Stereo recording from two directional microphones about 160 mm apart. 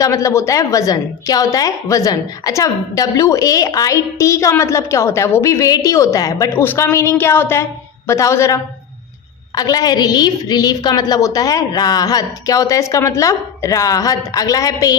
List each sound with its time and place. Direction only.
0.0 s a woman's voice: 20° left (ahead or behind)